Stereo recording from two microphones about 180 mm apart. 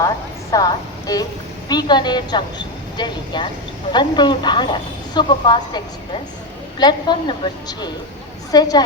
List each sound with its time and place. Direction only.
0.5 s a woman's voice: 20° left (ahead or behind)